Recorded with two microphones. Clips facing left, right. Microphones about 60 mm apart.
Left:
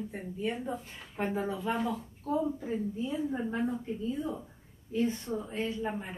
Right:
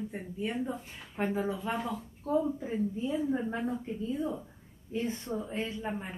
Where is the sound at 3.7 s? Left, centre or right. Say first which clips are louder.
Even; centre.